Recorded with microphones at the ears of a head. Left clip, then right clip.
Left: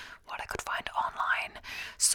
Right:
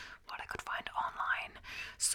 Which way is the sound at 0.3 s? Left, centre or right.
Left.